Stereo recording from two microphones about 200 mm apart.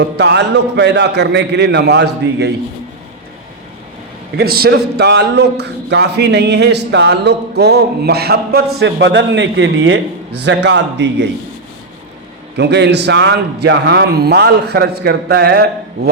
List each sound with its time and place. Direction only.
0.0 s a man's voice: 60° right (ahead or behind)
4.4 s a man's voice: 50° right (ahead or behind)
12.5 s a man's voice: 60° right (ahead or behind)